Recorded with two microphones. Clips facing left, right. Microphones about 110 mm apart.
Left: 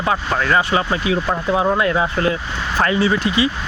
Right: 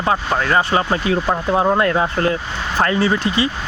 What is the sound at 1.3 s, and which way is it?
Speech, 30° right (ahead or behind).